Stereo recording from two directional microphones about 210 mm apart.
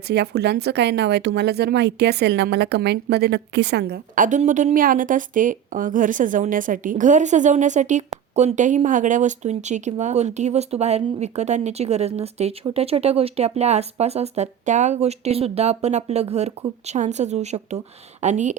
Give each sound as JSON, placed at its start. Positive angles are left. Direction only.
{"t": 0.1, "sound": "speech", "side_deg": -50}